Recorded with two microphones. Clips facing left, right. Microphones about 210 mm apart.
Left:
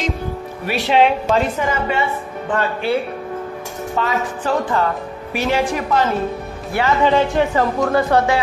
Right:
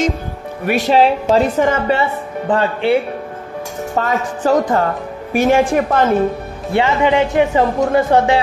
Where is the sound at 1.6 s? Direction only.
50° right (ahead or behind).